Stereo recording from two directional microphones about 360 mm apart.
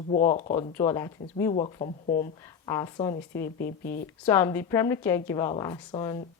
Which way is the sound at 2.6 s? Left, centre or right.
Centre.